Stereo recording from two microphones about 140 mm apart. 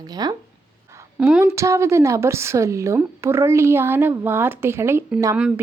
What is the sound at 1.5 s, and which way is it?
A woman's voice, 20° right (ahead or behind).